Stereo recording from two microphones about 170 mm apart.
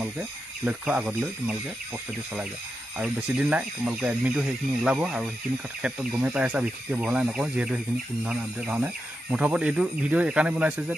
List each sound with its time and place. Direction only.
0.0 s speech: 10° right (ahead or behind)
3.0 s speech: 5° right (ahead or behind)